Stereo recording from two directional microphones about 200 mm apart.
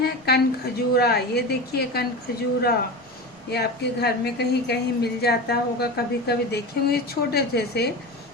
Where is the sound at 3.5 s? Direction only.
55° left (ahead or behind).